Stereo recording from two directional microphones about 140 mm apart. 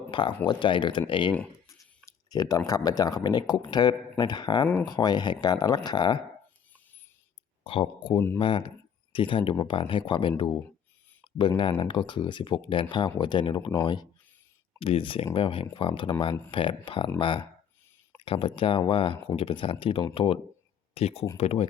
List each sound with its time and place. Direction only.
0.1 s speech: 35° left (ahead or behind)
2.0 s a sound: 25° left (ahead or behind)
2.6 s speech: 25° left (ahead or behind)
7.6 s speech: 40° left (ahead or behind)